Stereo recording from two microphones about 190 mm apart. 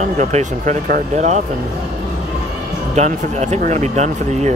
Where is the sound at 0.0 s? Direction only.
40° right (ahead or behind).